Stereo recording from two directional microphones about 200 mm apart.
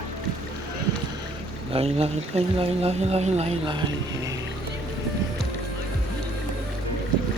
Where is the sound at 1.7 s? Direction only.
30° right (ahead or behind).